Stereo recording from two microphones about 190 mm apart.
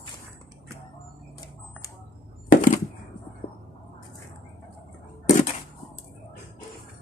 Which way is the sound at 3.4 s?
55° left (ahead or behind).